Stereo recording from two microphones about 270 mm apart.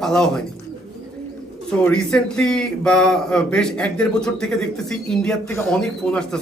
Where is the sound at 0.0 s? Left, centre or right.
Centre.